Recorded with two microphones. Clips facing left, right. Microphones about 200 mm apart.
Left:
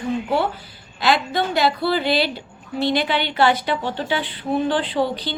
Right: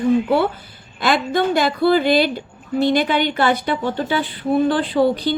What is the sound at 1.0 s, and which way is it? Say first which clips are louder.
A woman's voice: right 2 dB; 50° right (ahead or behind).